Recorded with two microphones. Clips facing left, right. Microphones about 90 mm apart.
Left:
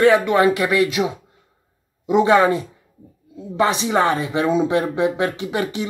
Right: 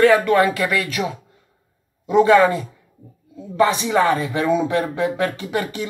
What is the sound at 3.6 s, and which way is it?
Speech, 25° left (ahead or behind).